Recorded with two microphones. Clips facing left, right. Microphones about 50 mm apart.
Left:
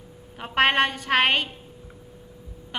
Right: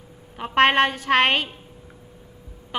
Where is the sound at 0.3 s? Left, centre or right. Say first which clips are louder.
Right 3 dB; centre.